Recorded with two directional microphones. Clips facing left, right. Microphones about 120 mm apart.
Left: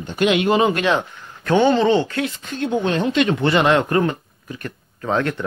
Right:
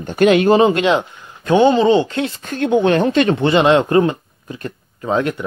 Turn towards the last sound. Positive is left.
turn(degrees=-15)  # may be behind; listen again after turning